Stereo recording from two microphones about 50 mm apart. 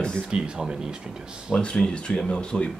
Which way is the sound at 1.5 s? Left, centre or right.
Centre.